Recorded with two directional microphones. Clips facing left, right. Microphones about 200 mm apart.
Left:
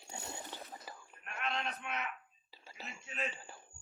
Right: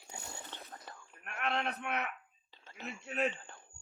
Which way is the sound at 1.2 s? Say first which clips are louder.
Right 4 dB; 60° right (ahead or behind).